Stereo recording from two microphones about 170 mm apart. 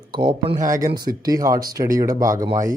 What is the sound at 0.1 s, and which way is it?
Speech, 25° right (ahead or behind).